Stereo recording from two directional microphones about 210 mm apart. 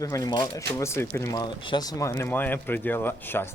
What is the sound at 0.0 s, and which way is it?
Speech, 15° left (ahead or behind).